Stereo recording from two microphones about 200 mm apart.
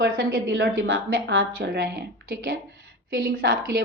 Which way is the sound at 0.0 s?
45° right (ahead or behind).